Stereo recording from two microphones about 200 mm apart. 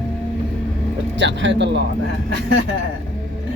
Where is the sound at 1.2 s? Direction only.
65° right (ahead or behind).